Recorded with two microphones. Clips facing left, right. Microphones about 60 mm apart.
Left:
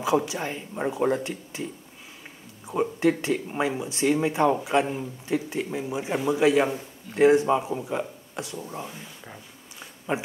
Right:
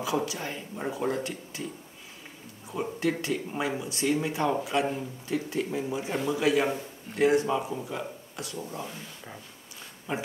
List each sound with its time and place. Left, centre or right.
0.0 s a man's voice: left
2.7 s a man's voice: left
8.8 s speech: centre
10.1 s speech: left